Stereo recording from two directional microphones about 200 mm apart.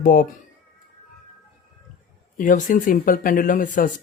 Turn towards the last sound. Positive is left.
turn(degrees=40)  # may be behind; listen again after turning